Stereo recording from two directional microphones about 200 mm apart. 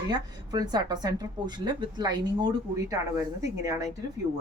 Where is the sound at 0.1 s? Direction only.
20° right (ahead or behind).